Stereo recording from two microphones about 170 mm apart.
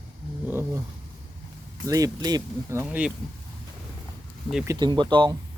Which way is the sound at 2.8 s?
5° right (ahead or behind).